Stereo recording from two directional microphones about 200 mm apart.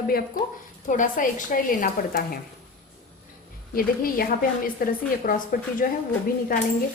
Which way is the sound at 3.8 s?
45° left (ahead or behind).